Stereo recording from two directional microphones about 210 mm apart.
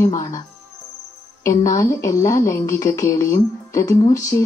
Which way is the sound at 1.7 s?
15° left (ahead or behind).